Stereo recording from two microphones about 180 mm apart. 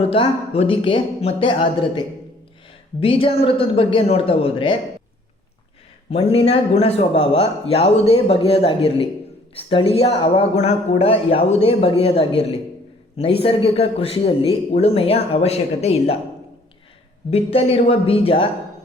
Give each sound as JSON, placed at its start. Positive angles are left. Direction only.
{"t": 0.1, "sound": "a man's voice", "side_deg": 30}
{"t": 6.1, "sound": "a man's voice", "side_deg": 35}
{"t": 17.3, "sound": "a man's voice", "side_deg": 30}